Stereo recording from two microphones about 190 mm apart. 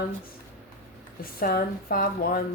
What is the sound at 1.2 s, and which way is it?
Speech, 50° left (ahead or behind).